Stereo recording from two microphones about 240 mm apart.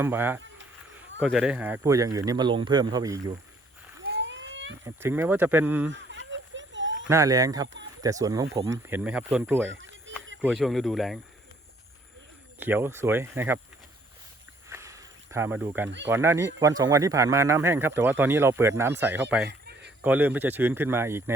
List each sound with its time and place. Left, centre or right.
0.0 s speech: centre
4.0 s a sound: right
4.9 s speech: centre
5.9 s a sound: right
7.1 s speech: centre
9.6 s a sound: right
10.4 s speech: centre
12.5 s speech: centre
14.7 s snake: centre
16.0 s speech: centre
19.5 s a sound: right
20.0 s speech: centre